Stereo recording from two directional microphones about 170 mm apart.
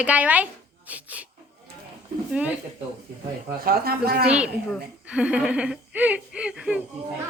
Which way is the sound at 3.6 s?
65° right (ahead or behind).